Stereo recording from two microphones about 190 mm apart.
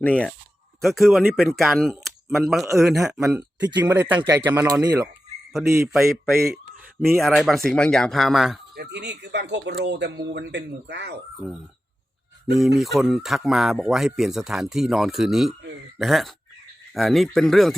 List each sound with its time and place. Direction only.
0.0 s speech: 5° left (ahead or behind); by 5.9 s 15° right (ahead or behind)
7.0 s speech: centre (ahead or behind)
8.7 s speech: 60° right (ahead or behind)
12.8 s speech: centre (ahead or behind)